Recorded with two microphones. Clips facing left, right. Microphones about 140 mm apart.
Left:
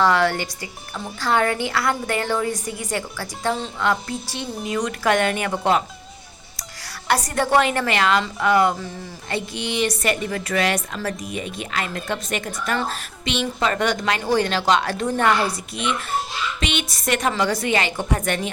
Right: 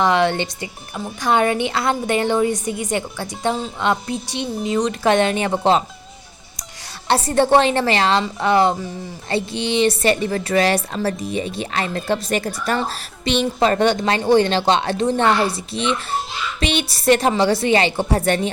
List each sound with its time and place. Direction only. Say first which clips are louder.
0.0 s speech: right 2 dB; 20° right (ahead or behind)
7.1 s a woman's voice: right 4 dB; 25° right (ahead or behind)